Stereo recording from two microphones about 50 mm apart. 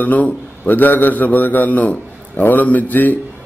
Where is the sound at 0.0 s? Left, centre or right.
Left.